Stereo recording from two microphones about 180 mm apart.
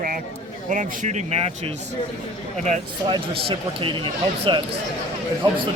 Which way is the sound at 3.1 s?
30° right (ahead or behind).